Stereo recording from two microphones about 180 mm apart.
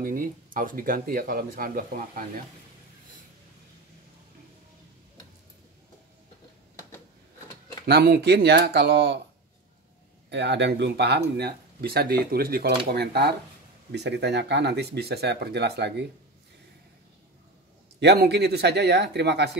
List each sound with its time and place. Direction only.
0.0 s speech: 50° right (ahead or behind)
7.8 s speech: 60° right (ahead or behind)
10.3 s speech: 75° right (ahead or behind)
18.0 s speech: 65° right (ahead or behind)